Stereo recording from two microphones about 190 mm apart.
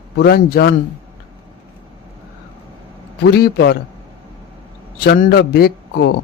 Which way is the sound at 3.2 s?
60° left (ahead or behind).